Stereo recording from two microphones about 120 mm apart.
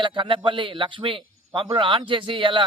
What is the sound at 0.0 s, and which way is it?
Speech, 40° right (ahead or behind).